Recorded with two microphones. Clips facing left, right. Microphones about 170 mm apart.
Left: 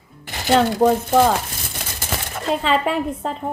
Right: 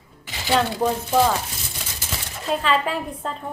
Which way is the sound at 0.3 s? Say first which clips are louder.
Left 5 dB; 50° left (ahead or behind).